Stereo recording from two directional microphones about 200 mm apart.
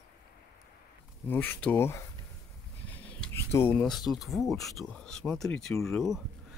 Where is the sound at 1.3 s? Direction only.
10° left (ahead or behind).